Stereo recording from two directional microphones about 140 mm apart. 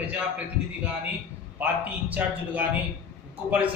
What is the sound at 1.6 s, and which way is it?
A man's voice, 10° right (ahead or behind).